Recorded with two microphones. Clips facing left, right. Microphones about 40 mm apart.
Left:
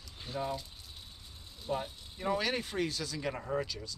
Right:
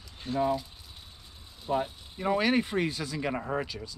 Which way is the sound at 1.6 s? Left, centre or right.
Centre.